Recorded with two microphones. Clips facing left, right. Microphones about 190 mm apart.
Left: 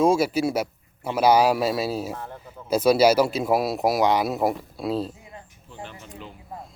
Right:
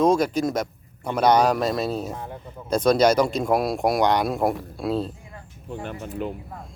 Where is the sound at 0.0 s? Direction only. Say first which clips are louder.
Even; 5° left (ahead or behind).